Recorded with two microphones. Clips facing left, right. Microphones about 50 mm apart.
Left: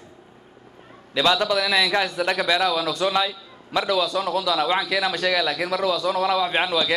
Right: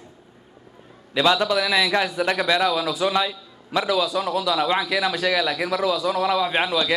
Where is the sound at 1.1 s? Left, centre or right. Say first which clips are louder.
Right 1 dB; centre.